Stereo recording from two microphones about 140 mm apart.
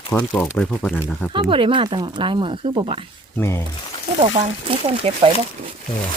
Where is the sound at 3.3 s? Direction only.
15° left (ahead or behind).